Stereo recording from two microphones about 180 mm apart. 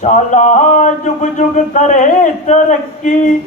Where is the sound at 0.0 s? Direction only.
45° left (ahead or behind).